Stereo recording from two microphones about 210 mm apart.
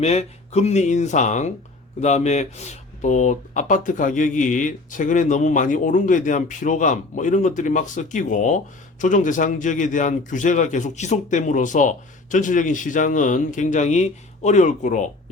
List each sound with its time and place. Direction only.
0.0 s speech: 30° left (ahead or behind)